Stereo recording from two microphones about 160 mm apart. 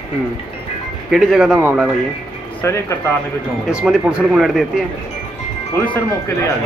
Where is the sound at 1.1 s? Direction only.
5° right (ahead or behind).